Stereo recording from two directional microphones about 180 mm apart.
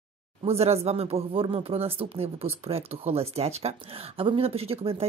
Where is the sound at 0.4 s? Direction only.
35° right (ahead or behind).